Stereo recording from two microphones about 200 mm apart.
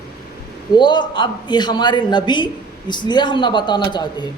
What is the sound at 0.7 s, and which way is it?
Speech, 20° left (ahead or behind).